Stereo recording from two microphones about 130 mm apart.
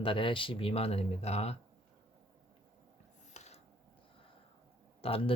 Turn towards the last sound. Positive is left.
turn(degrees=45)  # may be behind; listen again after turning